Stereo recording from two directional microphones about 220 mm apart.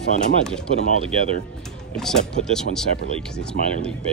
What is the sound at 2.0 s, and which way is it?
Speech, centre (ahead or behind).